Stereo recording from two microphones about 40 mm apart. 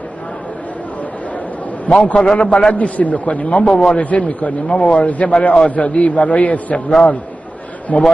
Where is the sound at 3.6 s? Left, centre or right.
Centre.